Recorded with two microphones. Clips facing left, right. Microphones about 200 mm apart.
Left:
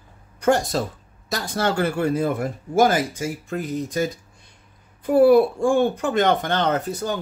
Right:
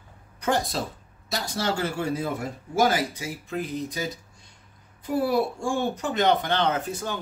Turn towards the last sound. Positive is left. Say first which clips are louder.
# left 4 dB
turn(degrees=40)  # may be behind; listen again after turning